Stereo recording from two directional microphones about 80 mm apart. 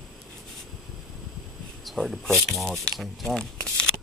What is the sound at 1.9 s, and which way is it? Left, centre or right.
Speech, centre.